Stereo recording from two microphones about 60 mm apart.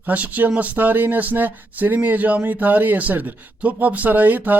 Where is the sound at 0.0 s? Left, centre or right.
Right.